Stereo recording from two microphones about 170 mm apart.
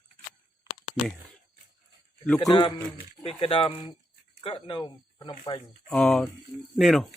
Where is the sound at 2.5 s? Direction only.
30° left (ahead or behind).